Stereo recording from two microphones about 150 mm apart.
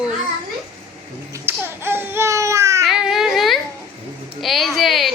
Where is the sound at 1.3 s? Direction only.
15° right (ahead or behind).